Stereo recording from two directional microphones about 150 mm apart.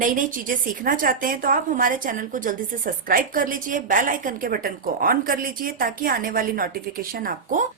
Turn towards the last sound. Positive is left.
turn(degrees=-70)  # may be behind; listen again after turning